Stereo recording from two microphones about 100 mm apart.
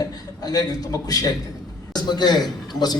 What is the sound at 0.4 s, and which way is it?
A man's voice, 40° left (ahead or behind).